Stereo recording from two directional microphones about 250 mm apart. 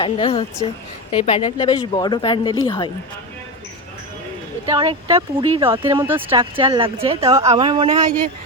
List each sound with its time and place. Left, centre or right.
0.0 s speech: left
4.6 s speech: centre
5.7 s speech: centre
6.3 s speech: centre